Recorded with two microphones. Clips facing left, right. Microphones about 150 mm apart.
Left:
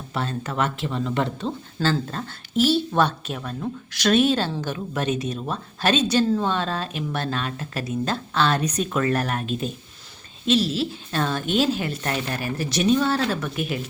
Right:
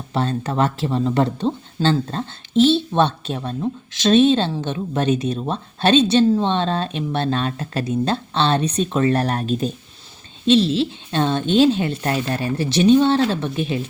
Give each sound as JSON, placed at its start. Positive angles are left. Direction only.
{"t": 0.1, "sound": "speech", "side_deg": -30}